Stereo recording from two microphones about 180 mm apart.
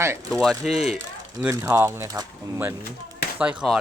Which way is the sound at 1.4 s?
15° right (ahead or behind).